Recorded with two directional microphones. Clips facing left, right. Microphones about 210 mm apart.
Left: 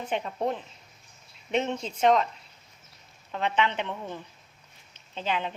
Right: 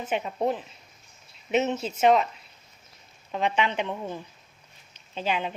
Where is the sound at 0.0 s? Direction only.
5° right (ahead or behind).